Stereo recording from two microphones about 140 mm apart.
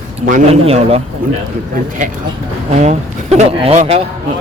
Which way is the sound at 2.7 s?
55° right (ahead or behind).